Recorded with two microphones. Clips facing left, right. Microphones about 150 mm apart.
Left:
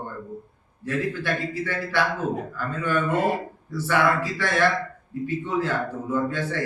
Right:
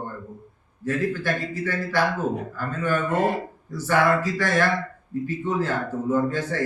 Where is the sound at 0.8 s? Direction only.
40° right (ahead or behind).